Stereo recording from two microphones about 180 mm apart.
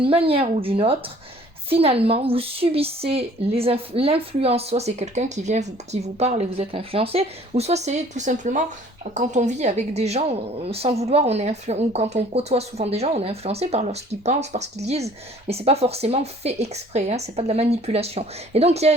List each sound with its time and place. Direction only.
0.0 s a woman's voice: 30° right (ahead or behind)